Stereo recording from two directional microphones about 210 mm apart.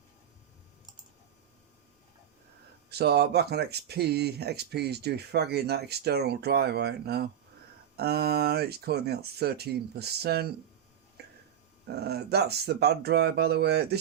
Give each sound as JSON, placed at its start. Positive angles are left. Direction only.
{"t": 2.9, "sound": "speech", "side_deg": -50}
{"t": 11.2, "sound": "a sound", "side_deg": -50}
{"t": 11.9, "sound": "speech", "side_deg": -50}